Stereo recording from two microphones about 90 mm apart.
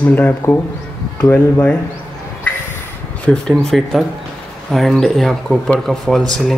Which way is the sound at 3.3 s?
5° left (ahead or behind).